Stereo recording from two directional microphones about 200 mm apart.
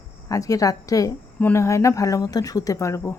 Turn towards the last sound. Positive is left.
turn(degrees=15)  # may be behind; listen again after turning